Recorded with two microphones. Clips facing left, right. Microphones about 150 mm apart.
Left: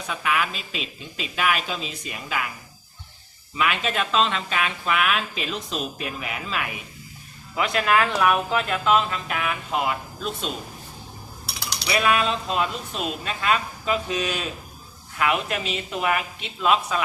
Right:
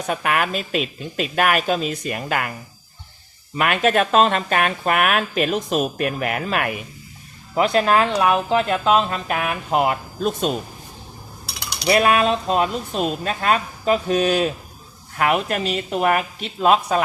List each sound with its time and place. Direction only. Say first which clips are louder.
0.1 s speech: right 4 dB; 55° right (ahead or behind)
3.5 s speech: right 7 dB; 55° right (ahead or behind)
7.5 s speech: right 5 dB; 35° right (ahead or behind); by 10.5 s 50° right (ahead or behind)
11.9 s speech: right 6 dB; 50° right (ahead or behind)